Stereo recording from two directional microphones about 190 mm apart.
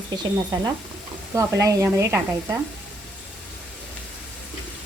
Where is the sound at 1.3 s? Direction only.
15° right (ahead or behind).